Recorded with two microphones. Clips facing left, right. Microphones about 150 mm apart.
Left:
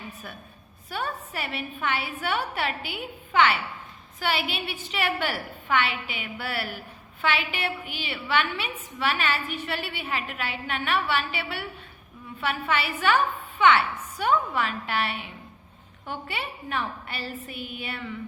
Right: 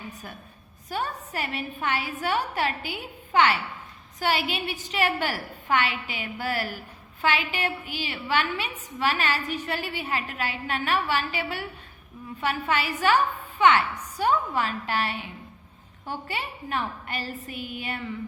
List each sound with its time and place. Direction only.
0.9 s a woman's voice: 40° right (ahead or behind)